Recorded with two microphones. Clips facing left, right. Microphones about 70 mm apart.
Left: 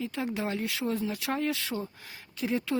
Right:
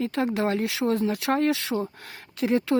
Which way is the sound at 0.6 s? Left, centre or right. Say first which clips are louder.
Right 6 dB; right.